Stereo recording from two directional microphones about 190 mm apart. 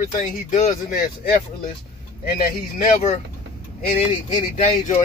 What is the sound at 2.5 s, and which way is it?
Speech, 45° left (ahead or behind).